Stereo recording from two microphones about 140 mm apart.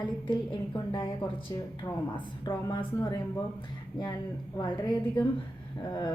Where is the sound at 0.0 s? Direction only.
35° left (ahead or behind).